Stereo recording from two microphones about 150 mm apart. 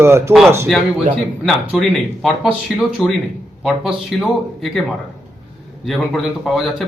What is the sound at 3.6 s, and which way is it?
Speech, centre (ahead or behind).